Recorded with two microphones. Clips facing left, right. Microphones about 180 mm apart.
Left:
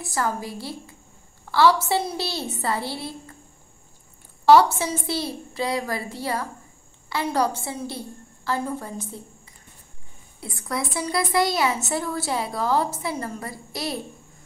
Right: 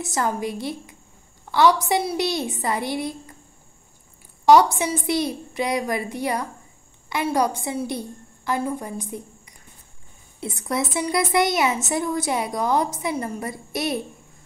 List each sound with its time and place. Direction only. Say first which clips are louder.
0.0 s a woman's voice: right 2 dB; 20° right (ahead or behind)
4.5 s a woman's voice: right 1 dB; 15° right (ahead or behind)
10.4 s a woman's voice: right 4 dB; 25° right (ahead or behind)